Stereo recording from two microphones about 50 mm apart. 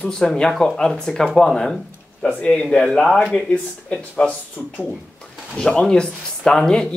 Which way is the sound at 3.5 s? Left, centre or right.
Left.